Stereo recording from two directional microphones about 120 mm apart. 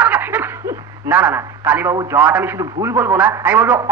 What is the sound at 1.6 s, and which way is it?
A man's voice, 15° right (ahead or behind).